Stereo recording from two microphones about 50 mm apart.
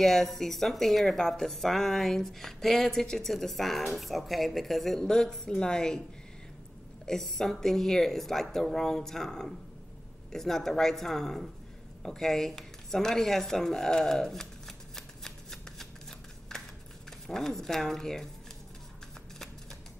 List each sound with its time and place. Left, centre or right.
0.0 s speech: centre
7.1 s speech: centre
12.0 s a sound: centre
17.3 s speech: centre